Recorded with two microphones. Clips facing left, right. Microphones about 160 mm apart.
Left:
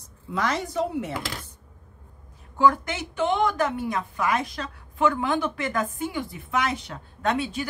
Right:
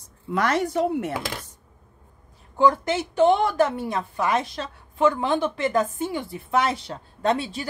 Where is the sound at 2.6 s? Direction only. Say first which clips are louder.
Right 2 dB; 30° right (ahead or behind).